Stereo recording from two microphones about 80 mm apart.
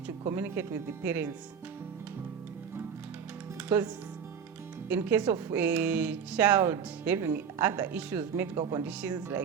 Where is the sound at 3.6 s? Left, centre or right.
Right.